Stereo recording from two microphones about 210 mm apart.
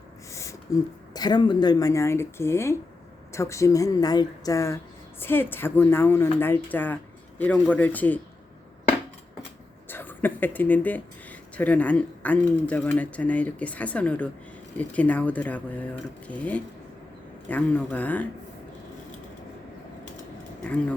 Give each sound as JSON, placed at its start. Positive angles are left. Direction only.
{"t": 0.3, "sound": "speech", "side_deg": 15}
{"t": 9.9, "sound": "speech", "side_deg": 10}
{"t": 20.7, "sound": "speech", "side_deg": 5}